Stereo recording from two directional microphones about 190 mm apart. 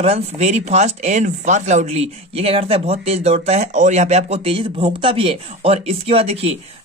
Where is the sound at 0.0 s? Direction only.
35° right (ahead or behind).